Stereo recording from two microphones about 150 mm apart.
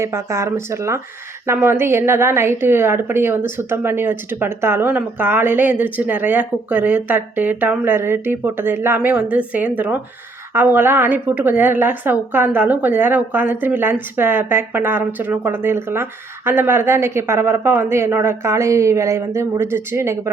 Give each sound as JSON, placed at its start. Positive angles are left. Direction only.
{"t": 0.0, "sound": "speech", "side_deg": -20}